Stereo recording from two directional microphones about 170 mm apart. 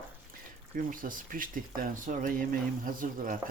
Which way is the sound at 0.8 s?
55° right (ahead or behind).